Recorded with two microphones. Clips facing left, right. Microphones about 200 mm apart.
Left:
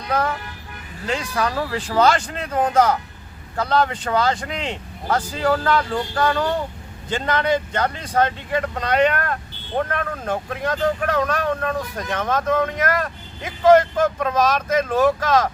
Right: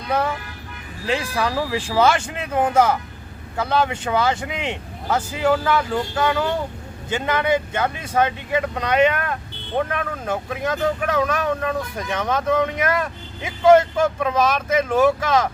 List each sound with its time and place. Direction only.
1.0 s speech: 15° right (ahead or behind)